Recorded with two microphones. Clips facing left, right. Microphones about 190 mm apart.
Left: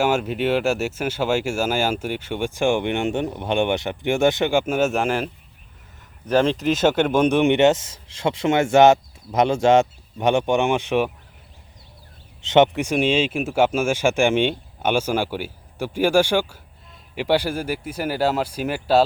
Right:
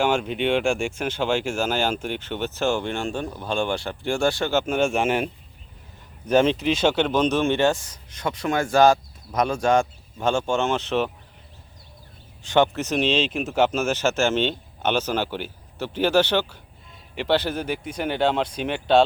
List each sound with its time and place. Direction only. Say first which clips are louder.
0.0 s speech: left 2 dB; 5° left (ahead or behind)
4.6 s speech: left 1 dB; 5° left (ahead or behind)
6.5 s speech: left 2 dB; 45° left (ahead or behind)
6.8 s speech: left 3 dB; 10° left (ahead or behind)
12.4 s speech: left 4 dB; 20° left (ahead or behind); by 19.0 s 5° left (ahead or behind)